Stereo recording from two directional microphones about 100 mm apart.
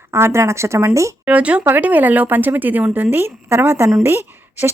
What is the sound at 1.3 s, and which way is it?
Speech, 15° right (ahead or behind).